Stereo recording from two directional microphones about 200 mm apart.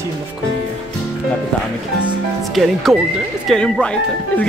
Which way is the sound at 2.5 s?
Centre (ahead or behind).